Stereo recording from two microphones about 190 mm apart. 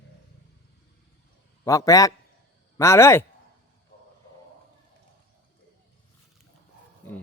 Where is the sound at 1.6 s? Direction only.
15° left (ahead or behind).